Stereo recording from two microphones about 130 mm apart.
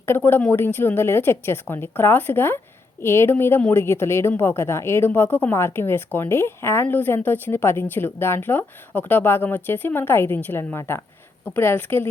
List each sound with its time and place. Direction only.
0.0 s a woman's voice: 15° left (ahead or behind)